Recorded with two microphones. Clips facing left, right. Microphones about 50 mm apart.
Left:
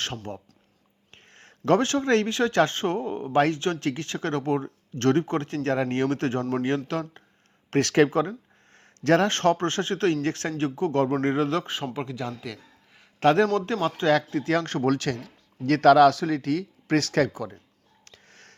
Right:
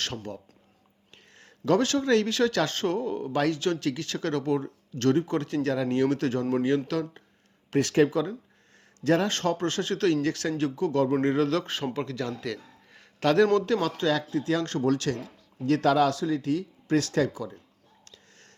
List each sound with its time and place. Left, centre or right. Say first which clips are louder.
0.0 s speech: left 1 dB; left
1.1 s speech: left 2 dB; left
5.6 s speech: left 1 dB; left
7.8 s speech: left 2 dB; left
8.7 s a sound: left 3 dB; left
9.3 s speech: left 4 dB; left
11.3 s a man's voice: even; left; by 13.1 s centre
13.1 s a man's voice: left 1 dB; left
14.1 s speech: left 6 dB; left
15.2 s speech: left 1 dB; left
16.1 s speech: left 1 dB; left
17.2 s speech: left 1 dB; left
18.1 s a sound: left 4 dB; left